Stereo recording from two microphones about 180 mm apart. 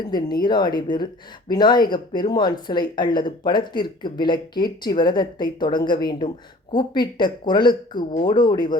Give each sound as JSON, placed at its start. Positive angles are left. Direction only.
{"t": 0.0, "sound": "speech", "side_deg": 25}